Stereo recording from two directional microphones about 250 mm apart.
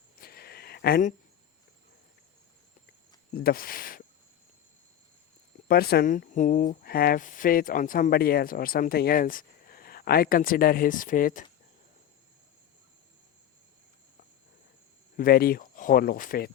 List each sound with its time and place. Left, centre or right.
0.2 s a sound: left
3.3 s speech: left
5.6 s speech: left
15.1 s speech: left